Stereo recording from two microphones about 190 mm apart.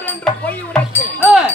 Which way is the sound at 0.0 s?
10° left (ahead or behind).